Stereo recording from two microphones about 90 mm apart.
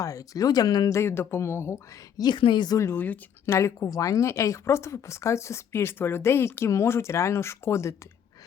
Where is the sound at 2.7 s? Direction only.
25° left (ahead or behind).